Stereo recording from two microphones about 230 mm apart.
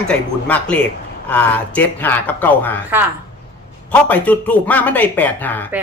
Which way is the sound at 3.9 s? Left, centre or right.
Centre.